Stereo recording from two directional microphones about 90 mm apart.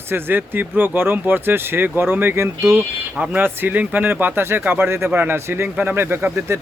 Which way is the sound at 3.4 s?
25° right (ahead or behind).